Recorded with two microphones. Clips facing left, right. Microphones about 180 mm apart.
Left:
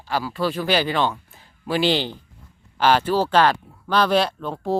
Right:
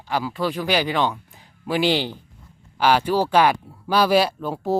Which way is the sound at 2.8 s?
10° right (ahead or behind).